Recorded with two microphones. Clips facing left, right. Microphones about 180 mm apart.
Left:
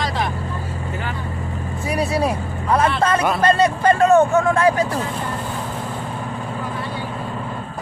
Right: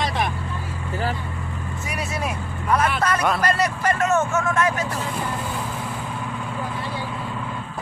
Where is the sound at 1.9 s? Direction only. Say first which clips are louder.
Left 9 dB; 35° left (ahead or behind).